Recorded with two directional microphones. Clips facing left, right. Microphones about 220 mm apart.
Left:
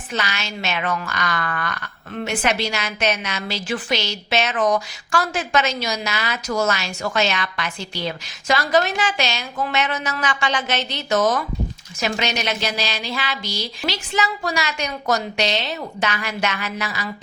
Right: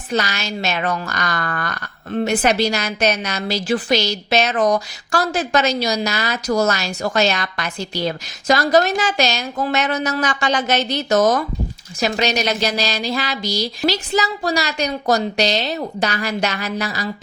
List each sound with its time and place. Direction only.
0.1 s a woman's voice: 40° right (ahead or behind)